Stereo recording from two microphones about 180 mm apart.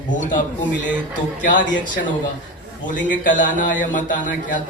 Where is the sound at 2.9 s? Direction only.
45° left (ahead or behind).